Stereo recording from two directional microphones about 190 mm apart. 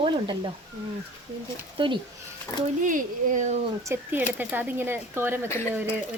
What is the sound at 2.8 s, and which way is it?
Speech, 45° right (ahead or behind).